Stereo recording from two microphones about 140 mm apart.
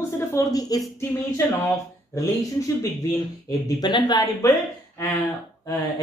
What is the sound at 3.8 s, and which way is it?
Speech, 30° left (ahead or behind).